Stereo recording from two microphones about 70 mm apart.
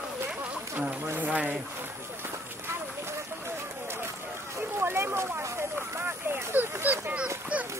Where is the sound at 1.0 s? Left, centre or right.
Right.